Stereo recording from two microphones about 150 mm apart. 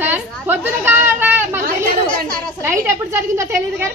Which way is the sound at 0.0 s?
15° right (ahead or behind).